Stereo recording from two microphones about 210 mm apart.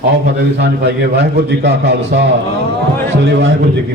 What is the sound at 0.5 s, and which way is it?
A man's voice, 55° right (ahead or behind).